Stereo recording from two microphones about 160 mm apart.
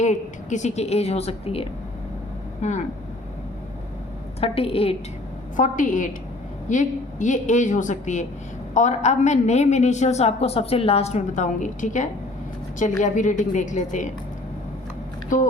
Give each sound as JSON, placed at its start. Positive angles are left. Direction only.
{"t": 0.0, "sound": "a woman's voice", "side_deg": 50}
{"t": 4.4, "sound": "a woman's voice", "side_deg": 35}
{"t": 5.5, "sound": "a woman's voice", "side_deg": 55}
{"t": 15.3, "sound": "a woman's voice", "side_deg": 55}